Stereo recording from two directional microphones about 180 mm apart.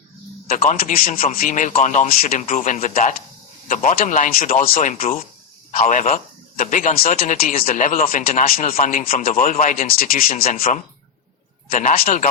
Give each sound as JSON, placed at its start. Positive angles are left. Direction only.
{"t": 0.4, "sound": "speech", "side_deg": 45}